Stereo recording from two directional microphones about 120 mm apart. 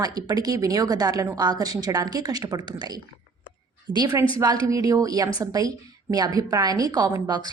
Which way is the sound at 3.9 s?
35° right (ahead or behind).